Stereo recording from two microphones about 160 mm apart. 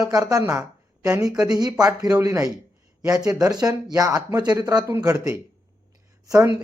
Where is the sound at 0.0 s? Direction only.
20° right (ahead or behind).